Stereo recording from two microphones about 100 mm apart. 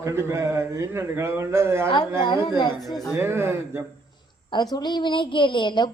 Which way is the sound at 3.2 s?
25° right (ahead or behind).